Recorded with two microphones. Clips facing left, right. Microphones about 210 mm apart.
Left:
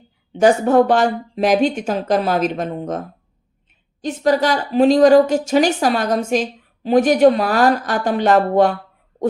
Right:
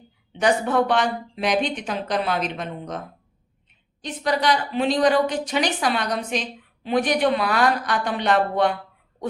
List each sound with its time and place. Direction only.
0.3 s a woman's voice: 45° left (ahead or behind)